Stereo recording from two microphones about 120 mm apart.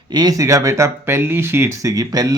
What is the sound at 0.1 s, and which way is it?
Speech, 35° right (ahead or behind).